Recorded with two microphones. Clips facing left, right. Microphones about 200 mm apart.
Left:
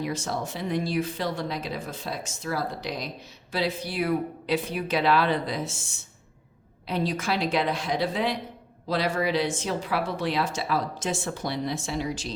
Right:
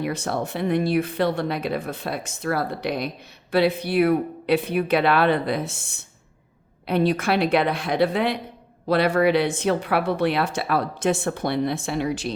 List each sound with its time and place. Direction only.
0.0 s speech: 60° right (ahead or behind)